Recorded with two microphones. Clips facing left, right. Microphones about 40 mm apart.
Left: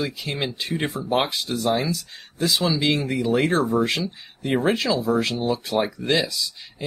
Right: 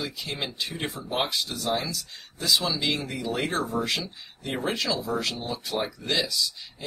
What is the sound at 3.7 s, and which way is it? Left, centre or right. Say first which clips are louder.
Speech: left 6 dB; centre.